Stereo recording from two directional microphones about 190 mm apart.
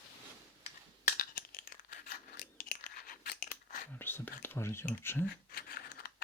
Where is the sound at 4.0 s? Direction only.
10° left (ahead or behind).